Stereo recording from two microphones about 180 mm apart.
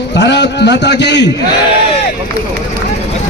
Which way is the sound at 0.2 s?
70° left (ahead or behind).